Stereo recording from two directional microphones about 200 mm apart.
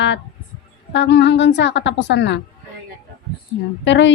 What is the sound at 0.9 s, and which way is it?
A woman's voice, 60° left (ahead or behind).